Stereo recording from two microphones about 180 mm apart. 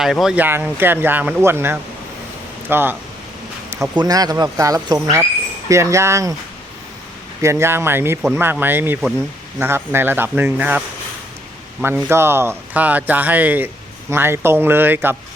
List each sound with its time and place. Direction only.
0.0 s speech: centre (ahead or behind)
7.4 s speech: 15° right (ahead or behind)